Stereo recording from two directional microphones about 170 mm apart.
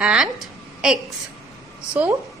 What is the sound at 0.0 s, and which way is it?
Speech, 5° right (ahead or behind).